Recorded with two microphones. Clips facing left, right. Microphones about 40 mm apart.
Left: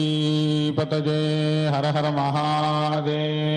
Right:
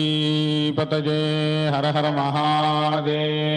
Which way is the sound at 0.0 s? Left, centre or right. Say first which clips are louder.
Right 1 dB; right.